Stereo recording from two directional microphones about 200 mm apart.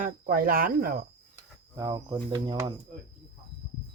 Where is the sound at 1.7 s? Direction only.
20° right (ahead or behind).